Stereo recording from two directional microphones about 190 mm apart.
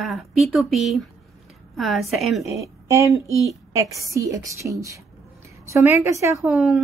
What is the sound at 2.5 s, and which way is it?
A woman's voice, 15° right (ahead or behind).